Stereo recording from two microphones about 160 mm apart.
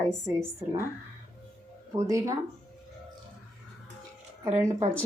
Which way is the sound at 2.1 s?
20° right (ahead or behind).